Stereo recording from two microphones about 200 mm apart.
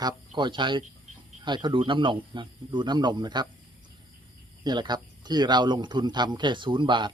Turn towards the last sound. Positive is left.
turn(degrees=-25)  # may be behind; listen again after turning